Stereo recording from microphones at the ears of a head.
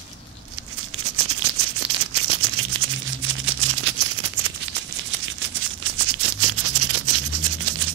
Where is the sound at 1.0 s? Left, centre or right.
Right.